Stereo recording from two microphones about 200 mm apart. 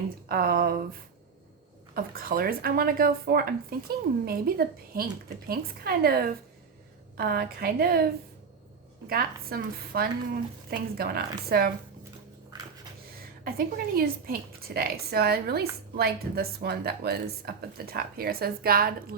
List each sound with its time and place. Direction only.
0.3 s a woman's voice: 50° right (ahead or behind)
2.0 s a woman's voice: 45° right (ahead or behind)
13.4 s a woman's voice: 50° right (ahead or behind)